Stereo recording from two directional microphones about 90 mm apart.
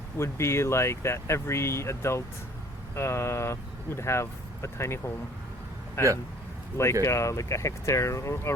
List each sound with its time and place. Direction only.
0.2 s speech: 30° left (ahead or behind)